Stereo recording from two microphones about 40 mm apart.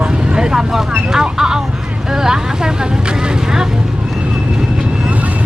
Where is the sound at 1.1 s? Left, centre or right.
Centre.